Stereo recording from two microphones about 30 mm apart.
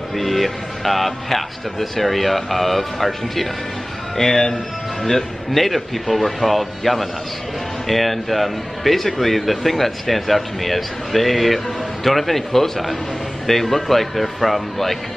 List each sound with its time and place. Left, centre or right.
0.1 s speech: centre
4.2 s speech: centre
5.0 s speech: centre